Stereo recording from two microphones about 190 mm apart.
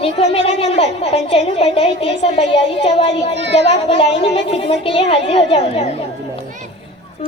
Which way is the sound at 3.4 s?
65° right (ahead or behind).